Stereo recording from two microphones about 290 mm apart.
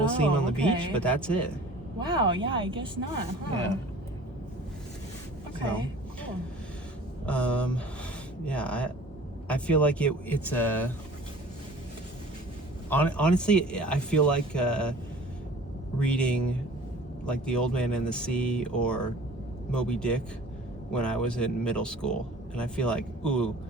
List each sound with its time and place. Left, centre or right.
0.0 s speech: centre
2.0 s a woman's voice: centre
7.3 s speech: centre
12.9 s speech: centre
16.0 s speech: centre